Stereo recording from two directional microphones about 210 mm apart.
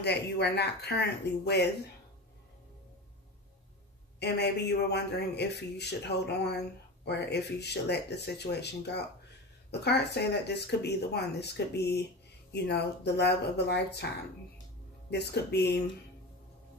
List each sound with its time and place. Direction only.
0.0 s a man's voice: 50° left (ahead or behind)
4.2 s a man's voice: 50° left (ahead or behind)
15.0 s a man's voice: 55° left (ahead or behind)